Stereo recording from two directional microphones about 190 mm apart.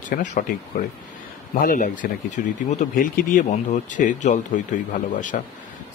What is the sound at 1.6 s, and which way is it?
Speech, 45° left (ahead or behind).